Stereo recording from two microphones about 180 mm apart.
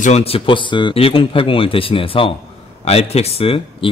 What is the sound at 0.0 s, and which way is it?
A man's voice, 35° left (ahead or behind).